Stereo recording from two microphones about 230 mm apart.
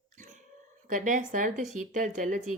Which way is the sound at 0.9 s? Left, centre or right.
Right.